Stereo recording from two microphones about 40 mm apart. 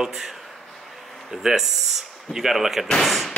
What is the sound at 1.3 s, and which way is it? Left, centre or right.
A man's voice, centre.